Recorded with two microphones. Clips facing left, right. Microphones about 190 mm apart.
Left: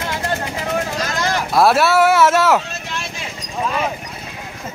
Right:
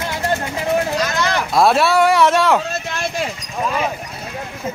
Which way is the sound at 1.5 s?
Centre (ahead or behind).